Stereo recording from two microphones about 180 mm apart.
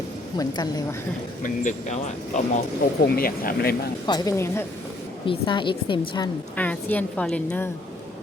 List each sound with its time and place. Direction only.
0.3 s speech: 20° left (ahead or behind)
1.4 s speech: 45° left (ahead or behind)
2.8 s speech: 55° left (ahead or behind)
4.0 s speech: 20° left (ahead or behind)
5.2 s speech: 30° left (ahead or behind)
6.6 s a woman's voice: 10° left (ahead or behind)